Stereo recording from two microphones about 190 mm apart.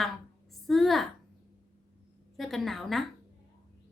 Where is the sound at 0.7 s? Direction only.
Centre (ahead or behind).